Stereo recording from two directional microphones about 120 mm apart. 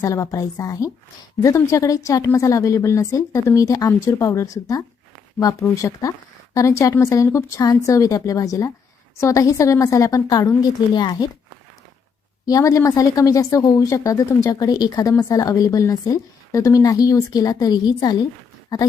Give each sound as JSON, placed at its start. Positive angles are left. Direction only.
{"t": 0.0, "sound": "a woman's voice", "side_deg": 25}
{"t": 12.5, "sound": "a woman's voice", "side_deg": 30}